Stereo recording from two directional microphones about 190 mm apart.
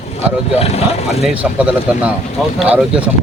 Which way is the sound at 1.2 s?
5° right (ahead or behind).